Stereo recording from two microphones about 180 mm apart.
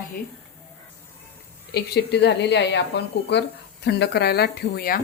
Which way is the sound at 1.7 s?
65° left (ahead or behind).